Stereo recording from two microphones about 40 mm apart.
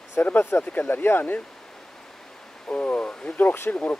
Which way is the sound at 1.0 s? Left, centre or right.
Left.